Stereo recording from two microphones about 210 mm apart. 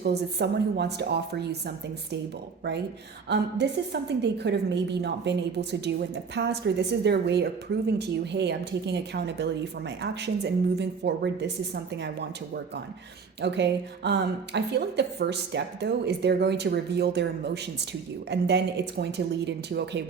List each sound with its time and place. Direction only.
0.0 s a woman's voice: 50° right (ahead or behind)
3.2 s a woman's voice: 50° right (ahead or behind)
13.4 s a woman's voice: 55° right (ahead or behind)